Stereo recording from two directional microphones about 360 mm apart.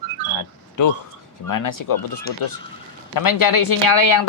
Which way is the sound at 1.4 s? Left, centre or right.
Left.